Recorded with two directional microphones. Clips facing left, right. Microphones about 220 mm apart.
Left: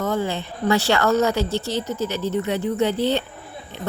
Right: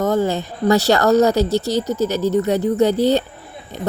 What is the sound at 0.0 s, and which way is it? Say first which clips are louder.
A woman's voice: right 6 dB; 40° right (ahead or behind).